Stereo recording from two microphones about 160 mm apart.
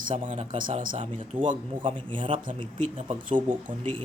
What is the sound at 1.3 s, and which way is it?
Speech, 10° right (ahead or behind).